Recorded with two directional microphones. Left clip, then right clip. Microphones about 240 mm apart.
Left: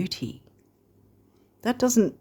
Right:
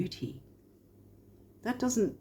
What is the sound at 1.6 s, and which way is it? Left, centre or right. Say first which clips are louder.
Speech: left 8 dB; left.